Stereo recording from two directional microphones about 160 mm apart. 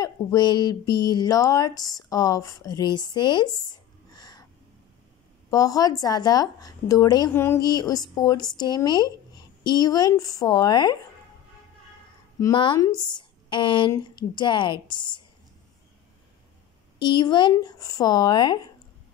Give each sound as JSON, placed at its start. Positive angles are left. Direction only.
{"t": 0.0, "sound": "speech", "side_deg": 25}
{"t": 5.5, "sound": "speech", "side_deg": 20}
{"t": 12.4, "sound": "speech", "side_deg": 25}
{"t": 17.0, "sound": "speech", "side_deg": 30}